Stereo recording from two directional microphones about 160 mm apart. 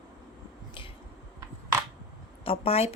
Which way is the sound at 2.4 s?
35° left (ahead or behind).